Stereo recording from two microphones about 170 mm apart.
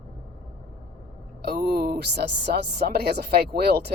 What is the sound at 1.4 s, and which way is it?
Speech, 65° right (ahead or behind).